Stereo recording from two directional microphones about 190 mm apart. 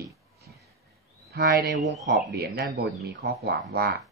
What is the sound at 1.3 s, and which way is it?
Speech, 65° right (ahead or behind).